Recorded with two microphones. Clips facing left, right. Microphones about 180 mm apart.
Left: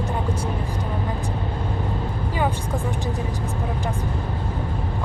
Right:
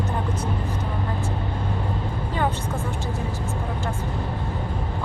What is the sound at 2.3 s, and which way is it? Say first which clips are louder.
Vehicle: left 1 dB; 15° left (ahead or behind).